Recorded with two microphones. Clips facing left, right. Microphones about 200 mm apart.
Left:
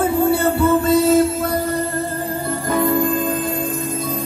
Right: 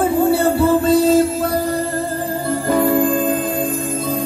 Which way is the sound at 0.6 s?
30° right (ahead or behind).